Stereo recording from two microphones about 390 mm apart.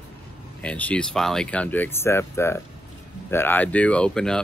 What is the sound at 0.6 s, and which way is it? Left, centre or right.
Speech, centre.